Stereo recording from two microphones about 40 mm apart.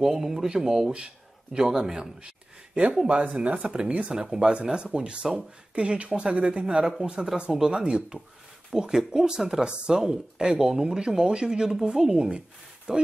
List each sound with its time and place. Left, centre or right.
0.0 s speech: centre
0.9 s speech: right